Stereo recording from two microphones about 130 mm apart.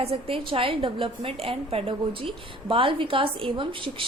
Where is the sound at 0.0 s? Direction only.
45° right (ahead or behind).